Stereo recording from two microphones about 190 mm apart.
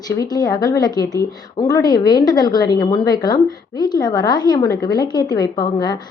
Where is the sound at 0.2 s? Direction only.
20° left (ahead or behind).